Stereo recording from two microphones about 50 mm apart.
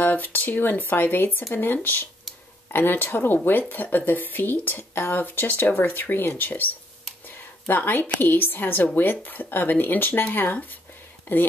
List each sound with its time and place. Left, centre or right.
0.0 s speech: left
7.2 s a sound: left
8.2 s speech: left